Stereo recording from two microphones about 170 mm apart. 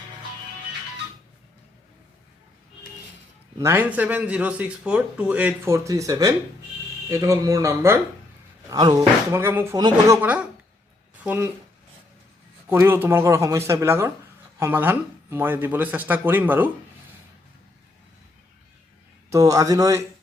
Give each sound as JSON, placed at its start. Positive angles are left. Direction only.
{"t": 3.6, "sound": "a man's voice", "side_deg": -15}
{"t": 10.2, "sound": "a man's voice", "side_deg": -10}
{"t": 12.6, "sound": "a man's voice", "side_deg": -15}
{"t": 19.3, "sound": "speech", "side_deg": -20}